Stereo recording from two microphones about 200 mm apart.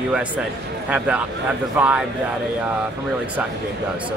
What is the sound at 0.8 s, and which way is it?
A man's voice, 5° right (ahead or behind).